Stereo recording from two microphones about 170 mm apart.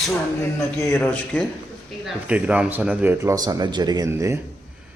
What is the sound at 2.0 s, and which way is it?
Speech, 5° right (ahead or behind).